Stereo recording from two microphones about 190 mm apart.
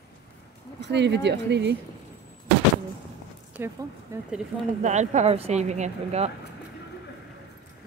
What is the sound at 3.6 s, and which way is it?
Speech, 10° right (ahead or behind).